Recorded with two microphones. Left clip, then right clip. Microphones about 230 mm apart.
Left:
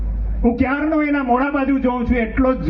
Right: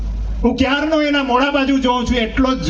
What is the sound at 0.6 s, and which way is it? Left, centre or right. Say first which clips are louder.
A man's voice: right 4 dB; right.